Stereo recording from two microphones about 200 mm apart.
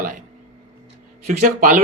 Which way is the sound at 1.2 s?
40° right (ahead or behind).